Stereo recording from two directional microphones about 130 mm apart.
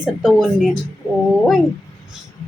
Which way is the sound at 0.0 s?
Centre (ahead or behind).